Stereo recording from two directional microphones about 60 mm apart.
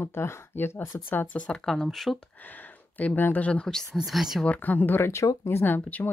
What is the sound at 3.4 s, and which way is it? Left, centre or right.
Speech, centre.